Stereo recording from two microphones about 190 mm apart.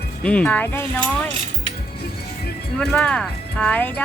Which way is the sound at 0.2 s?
5° left (ahead or behind).